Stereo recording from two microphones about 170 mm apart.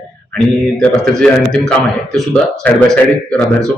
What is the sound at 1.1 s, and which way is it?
A man's voice, 5° left (ahead or behind).